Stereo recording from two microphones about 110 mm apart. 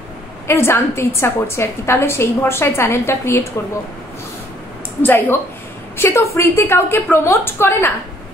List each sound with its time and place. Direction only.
0.5 s a woman's voice: 25° left (ahead or behind)
5.0 s a woman's voice: 15° left (ahead or behind)